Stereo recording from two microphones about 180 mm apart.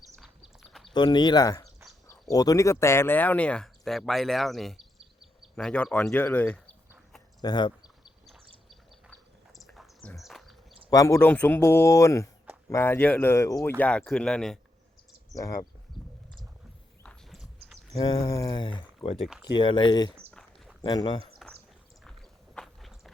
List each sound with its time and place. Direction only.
0.9 s speech: 25° left (ahead or behind)
7.4 s a sound: 25° left (ahead or behind)
8.3 s a sound: centre (ahead or behind)
10.2 s insect: centre (ahead or behind)
10.8 s speech: 20° left (ahead or behind); by 15.5 s centre (ahead or behind)
16.0 s a sound: centre (ahead or behind)
17.0 s walk: 5° left (ahead or behind)
17.9 s speech: 20° left (ahead or behind)
19.2 s speech: centre (ahead or behind)
19.5 s speech: 25° left (ahead or behind)
22.5 s walk: centre (ahead or behind)